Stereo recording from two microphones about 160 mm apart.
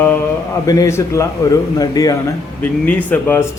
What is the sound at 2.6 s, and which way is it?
Speech, 10° left (ahead or behind).